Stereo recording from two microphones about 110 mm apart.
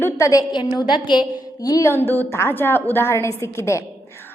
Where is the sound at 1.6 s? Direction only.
35° left (ahead or behind).